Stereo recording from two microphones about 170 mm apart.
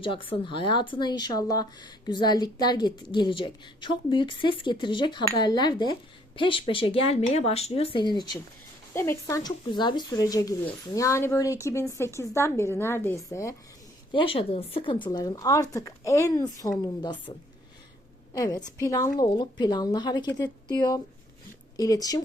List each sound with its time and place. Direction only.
0.0 s speech: 30° left (ahead or behind)
8.9 s speech: 15° left (ahead or behind)
14.1 s speech: 30° left (ahead or behind)
18.3 s speech: 20° left (ahead or behind)